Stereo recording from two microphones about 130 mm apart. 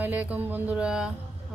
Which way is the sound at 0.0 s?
10° right (ahead or behind).